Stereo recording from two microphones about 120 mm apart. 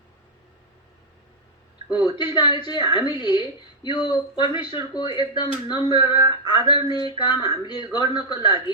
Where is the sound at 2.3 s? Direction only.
40° left (ahead or behind).